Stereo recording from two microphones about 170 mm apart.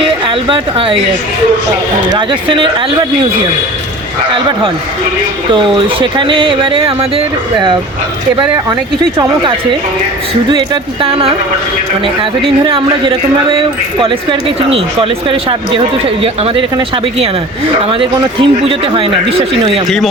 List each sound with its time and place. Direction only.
0.3 s speech: 30° right (ahead or behind)
2.0 s speech: 25° right (ahead or behind)
5.6 s speech: 30° right (ahead or behind)
9.1 s speech: 30° right (ahead or behind)
11.0 s speech: 35° right (ahead or behind)